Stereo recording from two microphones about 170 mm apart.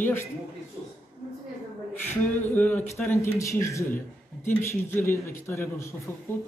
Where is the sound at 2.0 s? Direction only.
10° left (ahead or behind).